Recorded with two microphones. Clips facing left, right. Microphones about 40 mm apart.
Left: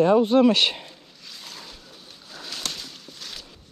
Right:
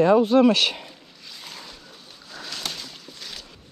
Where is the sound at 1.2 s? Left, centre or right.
Centre.